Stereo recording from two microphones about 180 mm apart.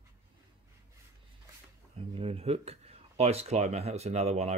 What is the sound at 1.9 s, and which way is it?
Speech, 30° right (ahead or behind).